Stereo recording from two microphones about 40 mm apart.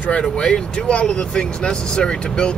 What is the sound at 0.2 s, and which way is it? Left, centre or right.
Speech, centre.